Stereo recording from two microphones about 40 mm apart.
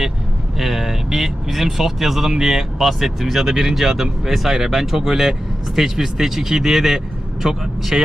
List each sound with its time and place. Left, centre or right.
0.6 s speech: centre